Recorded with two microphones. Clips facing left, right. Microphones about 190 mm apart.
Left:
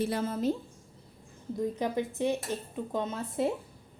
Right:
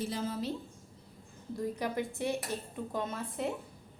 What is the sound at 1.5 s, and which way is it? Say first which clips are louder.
Speech: left 4 dB; 20° left (ahead or behind).